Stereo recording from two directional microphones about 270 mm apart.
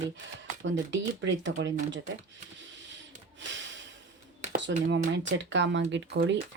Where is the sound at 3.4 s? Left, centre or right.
Right.